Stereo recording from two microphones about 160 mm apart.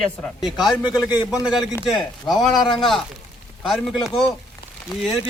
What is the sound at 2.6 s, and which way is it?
Speech, 30° left (ahead or behind).